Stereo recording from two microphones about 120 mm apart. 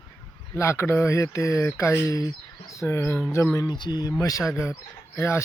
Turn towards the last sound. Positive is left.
turn(degrees=20)  # may be behind; listen again after turning